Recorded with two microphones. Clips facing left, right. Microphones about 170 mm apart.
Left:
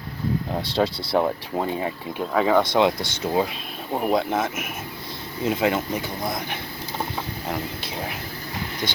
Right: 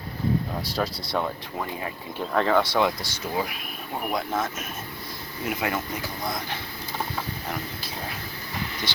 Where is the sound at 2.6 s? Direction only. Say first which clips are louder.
Left 4 dB; 20° left (ahead or behind).